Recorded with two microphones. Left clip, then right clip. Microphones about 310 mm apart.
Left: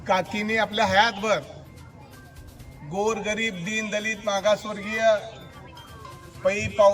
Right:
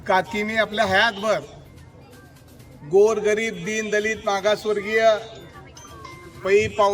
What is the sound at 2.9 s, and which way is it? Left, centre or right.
A man's voice, centre.